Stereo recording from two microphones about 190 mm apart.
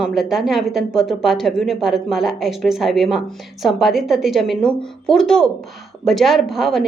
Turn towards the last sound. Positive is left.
turn(degrees=0)  # may be behind; listen again after turning